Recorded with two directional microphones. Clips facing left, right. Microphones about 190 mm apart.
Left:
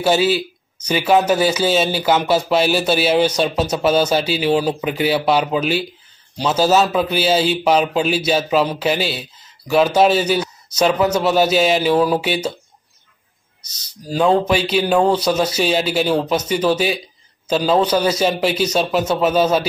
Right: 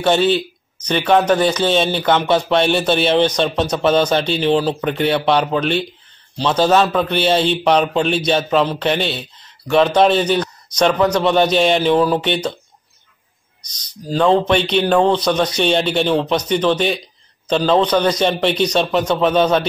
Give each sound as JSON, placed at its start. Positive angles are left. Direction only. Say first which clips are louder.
{"t": 0.0, "sound": "a man's voice", "louder": "right 1 dB", "side_deg": 5}
{"t": 13.6, "sound": "a man's voice", "louder": "right 4 dB", "side_deg": 10}